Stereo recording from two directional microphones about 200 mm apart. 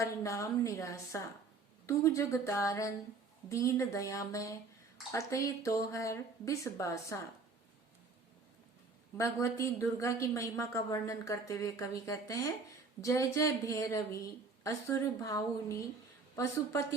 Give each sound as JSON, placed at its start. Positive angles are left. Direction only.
{"t": 0.0, "sound": "a woman's voice", "side_deg": 15}
{"t": 9.1, "sound": "a woman's voice", "side_deg": 15}